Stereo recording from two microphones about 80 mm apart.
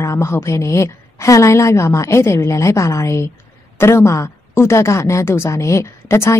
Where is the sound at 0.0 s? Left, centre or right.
Left.